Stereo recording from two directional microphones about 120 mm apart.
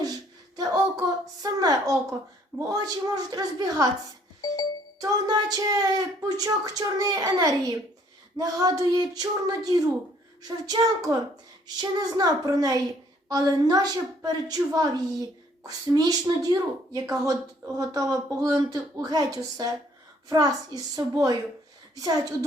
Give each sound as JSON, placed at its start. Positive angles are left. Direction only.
{"t": 0.0, "sound": "a sound", "side_deg": -30}
{"t": 2.6, "sound": "a woman's voice", "side_deg": -30}
{"t": 4.9, "sound": "a woman's voice", "side_deg": -30}